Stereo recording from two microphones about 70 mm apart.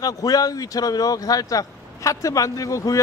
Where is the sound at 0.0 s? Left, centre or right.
Left.